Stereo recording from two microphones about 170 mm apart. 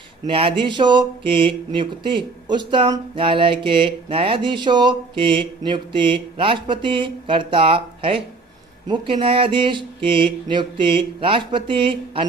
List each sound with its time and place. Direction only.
0.3 s speech: 30° right (ahead or behind)